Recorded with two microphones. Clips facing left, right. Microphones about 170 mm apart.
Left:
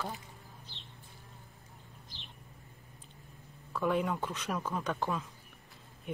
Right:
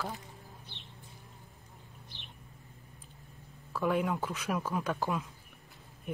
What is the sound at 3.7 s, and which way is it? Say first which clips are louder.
Speech: right 1 dB; centre (ahead or behind).